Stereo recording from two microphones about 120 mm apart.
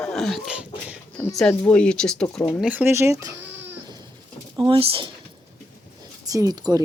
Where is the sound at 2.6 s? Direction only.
15° right (ahead or behind).